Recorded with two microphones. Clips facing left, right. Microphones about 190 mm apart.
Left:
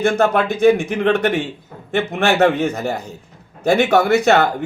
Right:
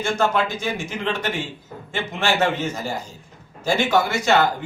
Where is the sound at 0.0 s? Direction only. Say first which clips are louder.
Left 5 dB; 60° left (ahead or behind).